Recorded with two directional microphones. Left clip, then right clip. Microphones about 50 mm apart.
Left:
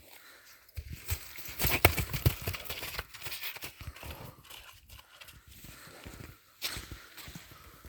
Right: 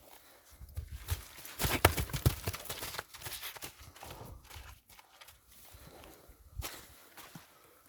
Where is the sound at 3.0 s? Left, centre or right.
Right.